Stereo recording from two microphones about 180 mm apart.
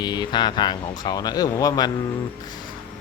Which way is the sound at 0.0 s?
25° left (ahead or behind).